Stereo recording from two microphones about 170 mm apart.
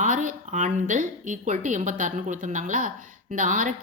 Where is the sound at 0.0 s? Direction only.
50° right (ahead or behind).